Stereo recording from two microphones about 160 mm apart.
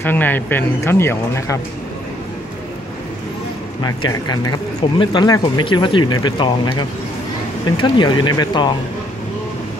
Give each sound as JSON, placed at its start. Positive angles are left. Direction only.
{"t": 0.0, "sound": "speech", "side_deg": 10}
{"t": 3.8, "sound": "speech", "side_deg": 25}